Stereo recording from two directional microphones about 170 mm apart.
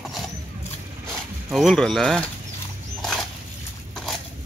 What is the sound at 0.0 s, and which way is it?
Vehicle, centre (ahead or behind).